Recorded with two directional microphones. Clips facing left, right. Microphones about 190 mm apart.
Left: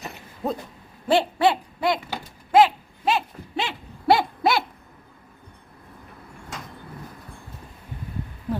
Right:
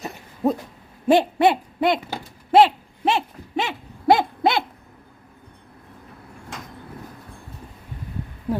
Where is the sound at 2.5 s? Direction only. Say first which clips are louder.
Right 2 dB; 30° right (ahead or behind).